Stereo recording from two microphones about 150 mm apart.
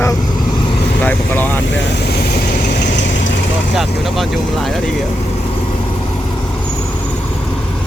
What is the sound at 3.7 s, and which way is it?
Vehicle, centre (ahead or behind).